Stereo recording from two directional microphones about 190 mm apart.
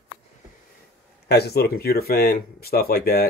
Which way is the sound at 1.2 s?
60° left (ahead or behind).